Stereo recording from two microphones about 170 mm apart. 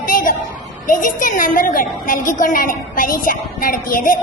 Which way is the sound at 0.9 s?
50° left (ahead or behind).